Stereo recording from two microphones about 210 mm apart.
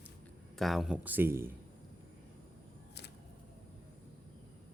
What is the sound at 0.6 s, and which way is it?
Speech, centre (ahead or behind).